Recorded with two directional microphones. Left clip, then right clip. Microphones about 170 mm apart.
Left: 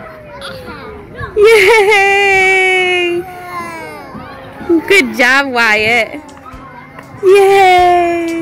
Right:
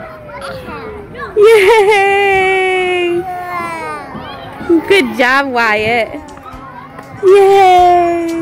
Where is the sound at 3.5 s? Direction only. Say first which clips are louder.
Right 4 dB; 10° right (ahead or behind).